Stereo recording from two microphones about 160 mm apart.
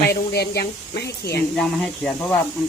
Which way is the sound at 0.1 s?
90° left.